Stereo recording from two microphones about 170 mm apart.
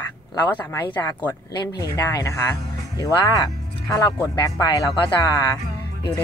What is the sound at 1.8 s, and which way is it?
Speech, 20° left (ahead or behind).